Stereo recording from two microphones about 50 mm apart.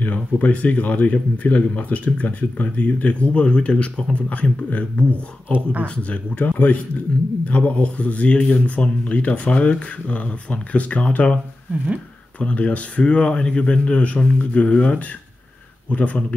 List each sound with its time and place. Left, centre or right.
0.0 s speech: left
5.5 s speech: right
6.0 s speech: left
12.4 s speech: left